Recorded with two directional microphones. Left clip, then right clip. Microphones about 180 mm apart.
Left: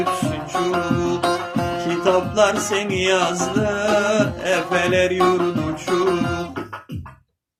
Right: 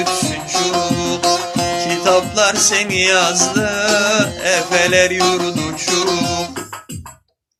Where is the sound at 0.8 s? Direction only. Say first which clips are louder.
Right 3 dB; 20° right (ahead or behind).